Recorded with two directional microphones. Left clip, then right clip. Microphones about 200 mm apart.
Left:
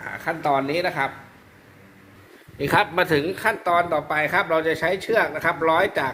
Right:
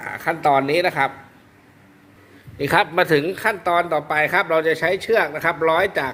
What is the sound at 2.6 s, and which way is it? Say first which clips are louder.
Speech: right 2 dB; 30° right (ahead or behind).